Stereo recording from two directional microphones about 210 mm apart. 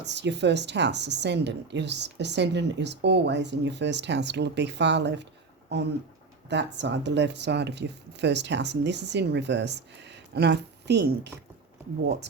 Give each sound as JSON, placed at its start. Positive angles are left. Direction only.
{"t": 0.0, "sound": "speech", "side_deg": -55}